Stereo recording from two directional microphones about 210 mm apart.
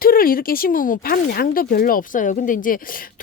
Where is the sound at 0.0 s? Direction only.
45° left (ahead or behind).